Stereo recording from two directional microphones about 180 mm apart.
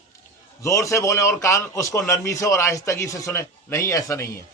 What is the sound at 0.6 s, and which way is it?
A man's voice, 15° left (ahead or behind).